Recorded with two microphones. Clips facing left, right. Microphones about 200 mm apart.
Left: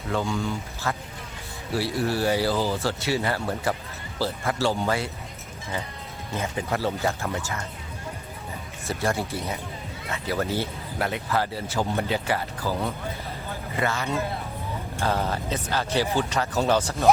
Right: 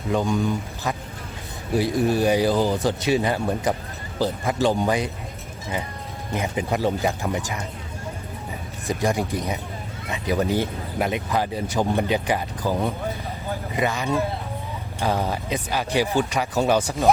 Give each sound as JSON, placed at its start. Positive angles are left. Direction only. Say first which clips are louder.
{"t": 0.1, "sound": "speech", "louder": "right 5 dB", "side_deg": -15}
{"t": 6.3, "sound": "speech", "louder": "right 3 dB", "side_deg": -15}
{"t": 8.9, "sound": "speech", "louder": "right 4 dB", "side_deg": -15}